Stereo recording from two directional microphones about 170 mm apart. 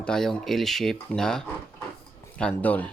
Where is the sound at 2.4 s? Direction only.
10° left (ahead or behind).